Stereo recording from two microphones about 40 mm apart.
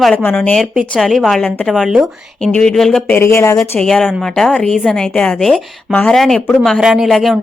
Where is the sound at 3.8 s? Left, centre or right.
Centre.